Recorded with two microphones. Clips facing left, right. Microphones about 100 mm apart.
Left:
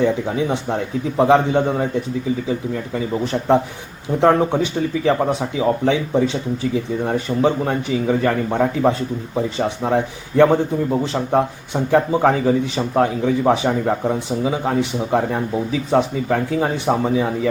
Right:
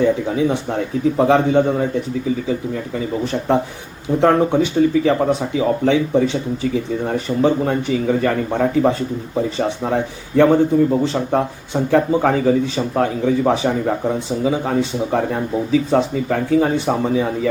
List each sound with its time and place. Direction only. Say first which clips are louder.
0.0 s a man's voice: right 2 dB; 20° left (ahead or behind)
4.2 s a man's voice: right 1 dB; 15° left (ahead or behind)